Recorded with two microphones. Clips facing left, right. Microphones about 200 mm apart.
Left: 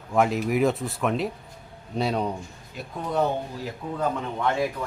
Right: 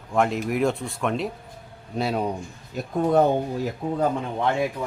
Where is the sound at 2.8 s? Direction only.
45° right (ahead or behind).